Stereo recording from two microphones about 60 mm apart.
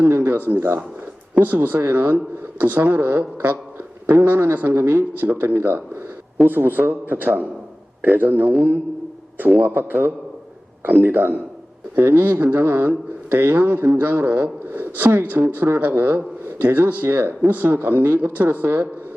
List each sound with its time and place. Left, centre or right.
0.3 s speech: right
9.6 s speech: right
16.4 s a sound: right
17.0 s speech: right